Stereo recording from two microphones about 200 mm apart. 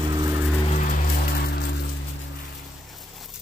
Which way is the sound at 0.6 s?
35° left (ahead or behind).